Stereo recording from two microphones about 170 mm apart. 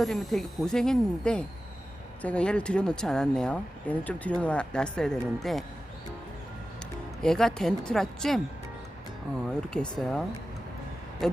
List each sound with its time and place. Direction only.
0.0 s speech: centre (ahead or behind)
7.2 s speech: 5° left (ahead or behind)
9.5 s speech: 5° left (ahead or behind)